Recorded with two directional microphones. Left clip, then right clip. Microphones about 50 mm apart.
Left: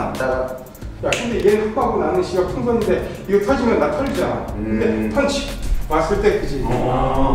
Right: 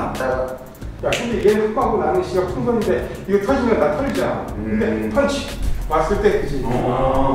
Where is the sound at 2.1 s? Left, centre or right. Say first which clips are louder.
Left 1 dB; centre.